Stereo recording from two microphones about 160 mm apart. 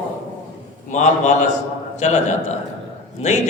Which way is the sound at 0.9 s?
50° left (ahead or behind).